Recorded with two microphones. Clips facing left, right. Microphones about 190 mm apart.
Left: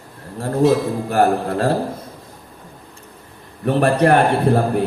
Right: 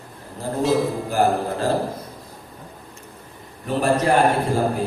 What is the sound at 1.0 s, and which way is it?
Speech, 65° left (ahead or behind).